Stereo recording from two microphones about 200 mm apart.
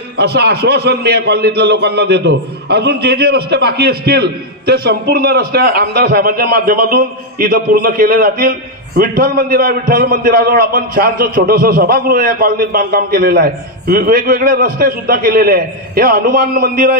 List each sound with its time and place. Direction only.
0.2 s a man's voice: 55° right (ahead or behind)